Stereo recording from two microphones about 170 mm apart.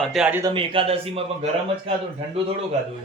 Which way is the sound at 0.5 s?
30° right (ahead or behind).